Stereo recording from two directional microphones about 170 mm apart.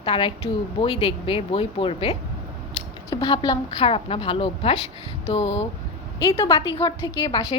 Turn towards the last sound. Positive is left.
turn(degrees=25)  # may be behind; listen again after turning